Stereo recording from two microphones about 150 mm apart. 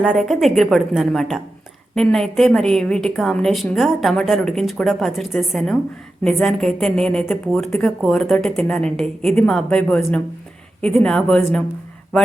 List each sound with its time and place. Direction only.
0.0 s a woman's voice: centre (ahead or behind)